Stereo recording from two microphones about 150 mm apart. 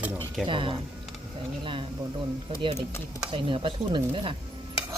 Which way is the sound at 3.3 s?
35° right (ahead or behind).